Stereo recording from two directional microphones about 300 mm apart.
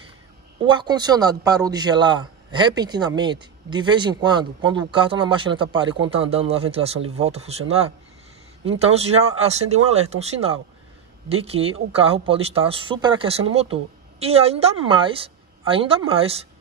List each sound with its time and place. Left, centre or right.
0.7 s a man's voice: centre